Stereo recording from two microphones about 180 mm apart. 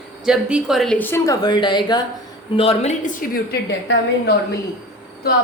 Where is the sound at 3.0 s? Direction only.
45° left (ahead or behind).